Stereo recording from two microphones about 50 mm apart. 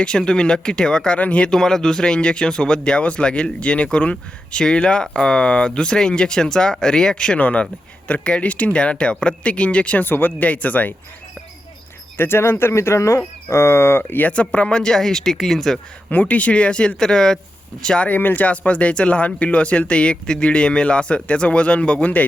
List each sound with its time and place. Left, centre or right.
0.0 s speech: centre
1.5 s speech: centre
7.3 s speech: left
10.0 s speech: left
10.4 s speech: left
12.1 s speech: left
14.1 s speech: left; by 15.8 s centre
16.0 s speech: left
18.1 s speech: left